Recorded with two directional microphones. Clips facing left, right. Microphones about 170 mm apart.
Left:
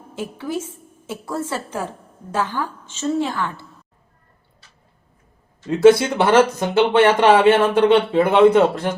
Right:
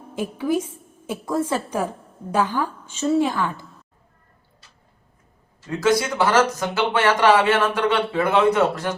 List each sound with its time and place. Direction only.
0.2 s a woman's voice: 15° right (ahead or behind)
5.6 s speech: 25° left (ahead or behind)